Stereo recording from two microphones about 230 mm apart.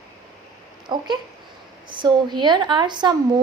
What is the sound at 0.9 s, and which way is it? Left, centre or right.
Speech, centre.